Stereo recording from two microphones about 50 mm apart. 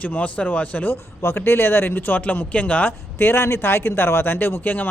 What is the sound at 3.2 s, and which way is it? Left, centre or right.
A man's voice, left.